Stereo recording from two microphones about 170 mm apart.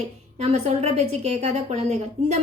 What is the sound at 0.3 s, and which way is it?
A woman's voice, 35° right (ahead or behind).